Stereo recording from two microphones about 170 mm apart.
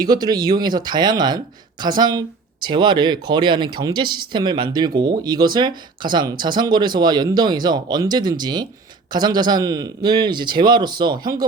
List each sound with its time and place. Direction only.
0.0 s speech: 25° right (ahead or behind)